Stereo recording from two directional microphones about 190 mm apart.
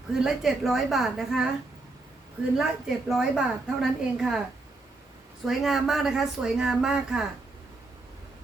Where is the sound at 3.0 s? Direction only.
Centre (ahead or behind).